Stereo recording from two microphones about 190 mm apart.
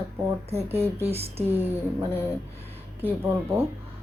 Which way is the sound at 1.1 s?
30° right (ahead or behind).